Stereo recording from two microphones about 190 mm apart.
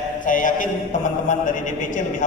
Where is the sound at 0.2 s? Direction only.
45° left (ahead or behind).